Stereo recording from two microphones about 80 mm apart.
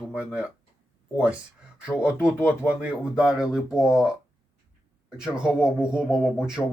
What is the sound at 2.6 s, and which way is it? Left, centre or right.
Speech, centre.